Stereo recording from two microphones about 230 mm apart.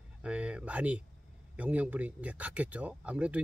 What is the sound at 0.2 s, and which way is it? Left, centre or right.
Speech, centre.